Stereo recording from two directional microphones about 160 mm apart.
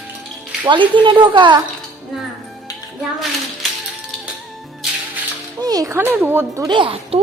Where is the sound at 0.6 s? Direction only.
30° right (ahead or behind).